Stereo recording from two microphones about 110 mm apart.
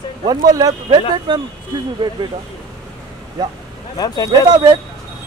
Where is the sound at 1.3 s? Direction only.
45° right (ahead or behind).